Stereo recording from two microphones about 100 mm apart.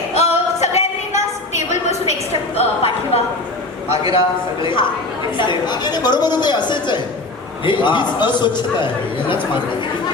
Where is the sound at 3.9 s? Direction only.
60° left (ahead or behind).